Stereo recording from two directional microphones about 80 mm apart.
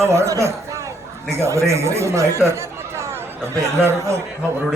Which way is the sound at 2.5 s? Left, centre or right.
Right.